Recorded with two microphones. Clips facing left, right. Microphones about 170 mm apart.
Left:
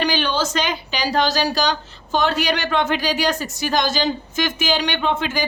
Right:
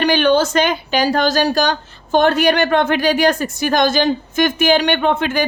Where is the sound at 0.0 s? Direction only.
55° right (ahead or behind).